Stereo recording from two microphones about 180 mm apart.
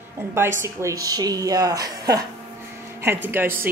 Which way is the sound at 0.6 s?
15° right (ahead or behind).